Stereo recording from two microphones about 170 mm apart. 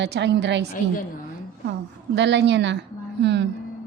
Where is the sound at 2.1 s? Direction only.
90° right.